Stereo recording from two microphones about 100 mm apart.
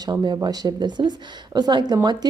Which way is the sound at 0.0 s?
45° right (ahead or behind).